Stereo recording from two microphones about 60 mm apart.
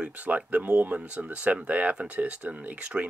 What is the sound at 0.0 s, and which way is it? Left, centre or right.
Speech, right.